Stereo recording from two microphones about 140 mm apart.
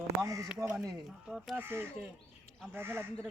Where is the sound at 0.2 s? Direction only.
20° right (ahead or behind).